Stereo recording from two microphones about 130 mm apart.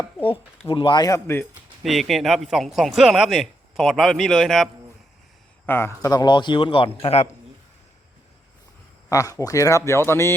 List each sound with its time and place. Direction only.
0.7 s speech: 40° left (ahead or behind); by 1.5 s 20° left (ahead or behind)
1.8 s speech: centre (ahead or behind)
5.6 s speech: 20° left (ahead or behind)
6.1 s speech: 35° left (ahead or behind)
7.0 s a man's voice: 55° left (ahead or behind)
9.0 s speech: 25° left (ahead or behind)